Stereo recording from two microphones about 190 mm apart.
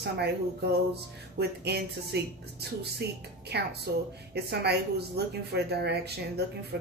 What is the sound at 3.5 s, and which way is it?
Speech, 60° right (ahead or behind).